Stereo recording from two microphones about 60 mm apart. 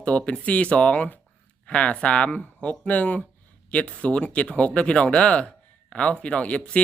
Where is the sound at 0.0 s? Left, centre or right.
Centre.